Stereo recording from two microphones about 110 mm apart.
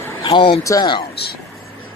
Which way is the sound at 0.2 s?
50° left (ahead or behind).